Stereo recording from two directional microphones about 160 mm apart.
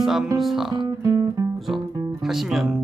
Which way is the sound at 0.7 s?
25° right (ahead or behind).